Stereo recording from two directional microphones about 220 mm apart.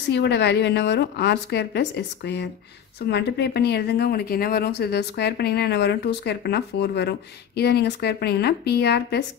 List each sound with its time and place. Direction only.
0.1 s speech: 50° left (ahead or behind)